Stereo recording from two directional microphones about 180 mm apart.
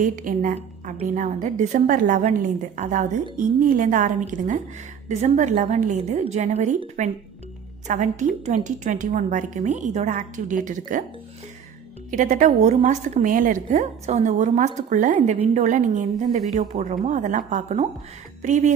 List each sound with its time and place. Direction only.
0.0 s a woman's voice: 50° right (ahead or behind)
7.8 s a woman's voice: 40° right (ahead or behind)
12.1 s a woman's voice: 45° right (ahead or behind)